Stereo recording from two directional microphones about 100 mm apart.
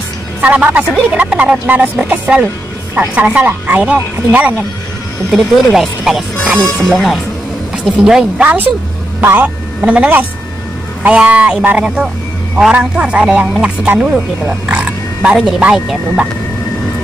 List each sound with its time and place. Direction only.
0.4 s speech: 15° right (ahead or behind)
2.4 s speech: 25° right (ahead or behind)
5.3 s speech: 5° right (ahead or behind)
7.8 s speech: 5° right (ahead or behind)
9.2 s speech: 20° right (ahead or behind)